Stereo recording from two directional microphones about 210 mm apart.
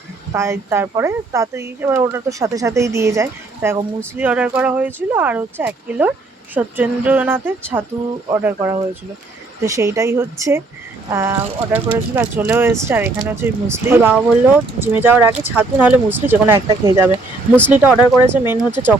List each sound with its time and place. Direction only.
0.3 s speech: 15° right (ahead or behind)